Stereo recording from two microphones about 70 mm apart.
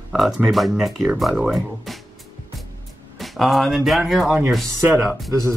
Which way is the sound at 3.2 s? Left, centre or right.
Centre.